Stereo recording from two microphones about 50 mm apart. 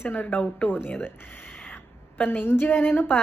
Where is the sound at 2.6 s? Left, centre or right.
Left.